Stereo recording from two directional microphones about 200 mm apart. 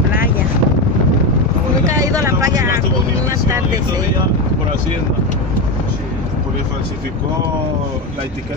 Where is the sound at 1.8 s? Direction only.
15° right (ahead or behind).